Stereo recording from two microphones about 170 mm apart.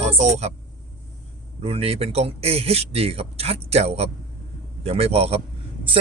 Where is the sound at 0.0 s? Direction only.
40° right (ahead or behind).